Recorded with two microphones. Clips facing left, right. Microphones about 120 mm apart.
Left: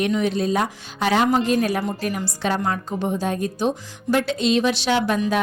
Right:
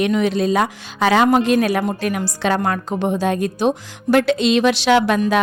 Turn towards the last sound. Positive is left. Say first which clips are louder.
# right 5 dB
turn(degrees=-85)